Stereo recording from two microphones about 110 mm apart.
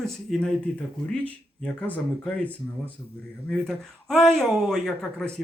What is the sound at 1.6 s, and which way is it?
Speech, 15° left (ahead or behind).